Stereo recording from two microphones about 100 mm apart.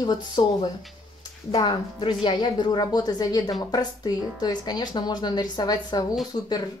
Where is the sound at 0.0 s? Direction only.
45° left (ahead or behind).